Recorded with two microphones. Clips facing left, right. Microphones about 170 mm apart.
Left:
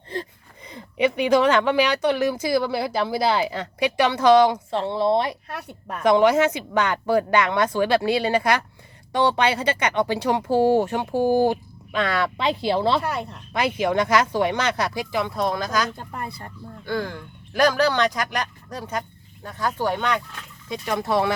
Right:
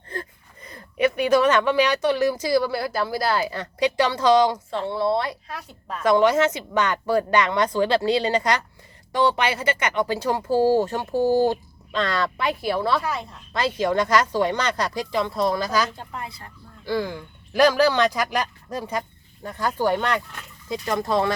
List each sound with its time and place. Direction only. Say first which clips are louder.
0.7 s speech: even; 15° left (ahead or behind)
4.7 s a woman's voice: left 2 dB; 20° left (ahead or behind)
5.5 s a woman's voice: left 1 dB; 60° left (ahead or behind)
6.0 s speech: left 1 dB; 15° left (ahead or behind)
10.8 s speech: even; 10° left (ahead or behind)
12.4 s a woman's voice: left 2 dB; 25° left (ahead or behind)
13.5 s speech: even; 10° left (ahead or behind); by 15.9 s 5° right (ahead or behind)
16.0 s speech: left 2 dB; 50° left (ahead or behind)
16.8 s speech: right 2 dB; 5° right (ahead or behind)